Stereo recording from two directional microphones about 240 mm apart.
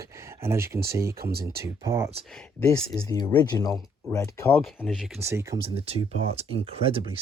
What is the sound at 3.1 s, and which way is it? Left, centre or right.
Speech, centre.